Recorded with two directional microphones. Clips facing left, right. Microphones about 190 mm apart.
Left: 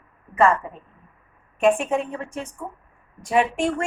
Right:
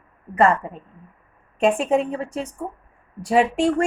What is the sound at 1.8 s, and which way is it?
A woman's voice, 35° right (ahead or behind).